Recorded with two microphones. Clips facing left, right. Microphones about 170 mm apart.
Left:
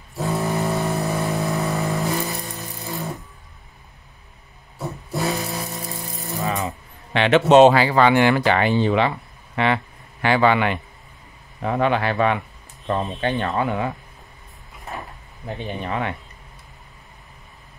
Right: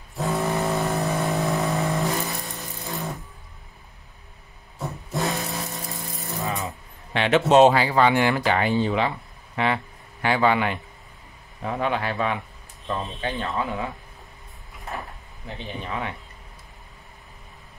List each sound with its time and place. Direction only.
0.1 s vehicle: centre (ahead or behind)
4.7 s rattle: centre (ahead or behind)
6.4 s rattle: 70° left (ahead or behind)
7.2 s speech: 80° left
15.4 s speech: 60° left (ahead or behind)